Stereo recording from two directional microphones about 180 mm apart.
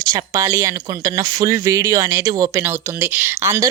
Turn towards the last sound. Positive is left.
turn(degrees=-15)  # may be behind; listen again after turning